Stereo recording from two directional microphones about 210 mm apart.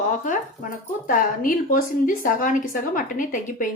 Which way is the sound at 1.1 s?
40° left (ahead or behind).